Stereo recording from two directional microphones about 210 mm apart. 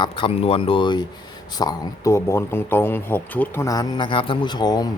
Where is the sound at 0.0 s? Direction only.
25° left (ahead or behind).